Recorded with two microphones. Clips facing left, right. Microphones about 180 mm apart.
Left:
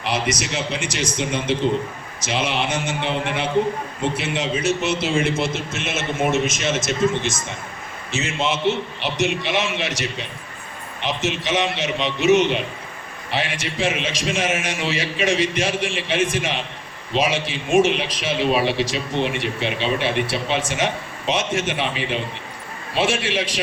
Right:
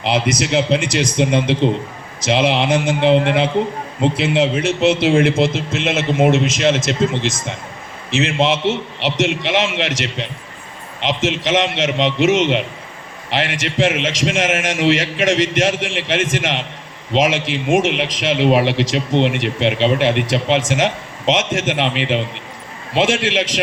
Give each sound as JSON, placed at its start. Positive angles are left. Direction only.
{"t": 0.0, "sound": "speech", "side_deg": -65}
{"t": 8.6, "sound": "a man's voice", "side_deg": -85}
{"t": 23.0, "sound": "a man's voice", "side_deg": -90}